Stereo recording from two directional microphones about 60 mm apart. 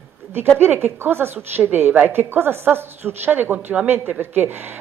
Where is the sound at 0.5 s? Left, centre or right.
Right.